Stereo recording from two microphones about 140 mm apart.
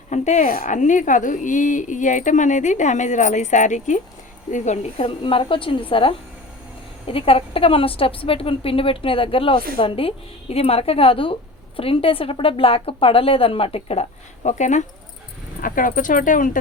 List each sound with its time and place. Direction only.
0.1 s a woman's voice: 55° left (ahead or behind)
15.6 s speech: 75° left (ahead or behind)